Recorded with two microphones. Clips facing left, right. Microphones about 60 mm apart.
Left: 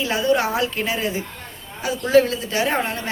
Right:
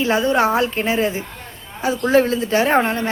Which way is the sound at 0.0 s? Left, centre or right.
Right.